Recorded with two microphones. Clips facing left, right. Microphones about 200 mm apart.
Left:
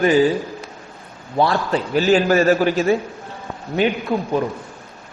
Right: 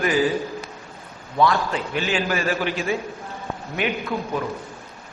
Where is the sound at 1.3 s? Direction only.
35° left (ahead or behind).